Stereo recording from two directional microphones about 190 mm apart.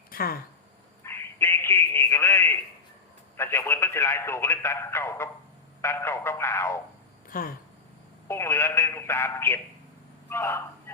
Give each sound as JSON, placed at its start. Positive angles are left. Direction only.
{"t": 0.1, "sound": "a sound", "side_deg": 50}
{"t": 1.0, "sound": "telephone", "side_deg": 10}
{"t": 3.3, "sound": "speech", "side_deg": 15}
{"t": 7.3, "sound": "speech", "side_deg": 50}
{"t": 8.3, "sound": "speech", "side_deg": 15}